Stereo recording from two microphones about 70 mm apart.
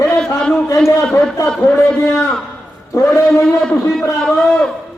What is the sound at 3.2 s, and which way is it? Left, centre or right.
A man's voice, centre.